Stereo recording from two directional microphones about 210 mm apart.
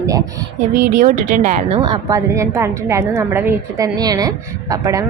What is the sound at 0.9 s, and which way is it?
Speech, 35° right (ahead or behind).